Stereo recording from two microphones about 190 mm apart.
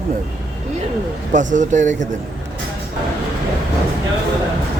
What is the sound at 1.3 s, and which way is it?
Speech, 40° right (ahead or behind).